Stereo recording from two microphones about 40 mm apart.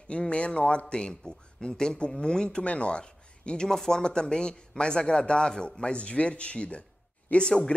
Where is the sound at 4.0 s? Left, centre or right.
Left.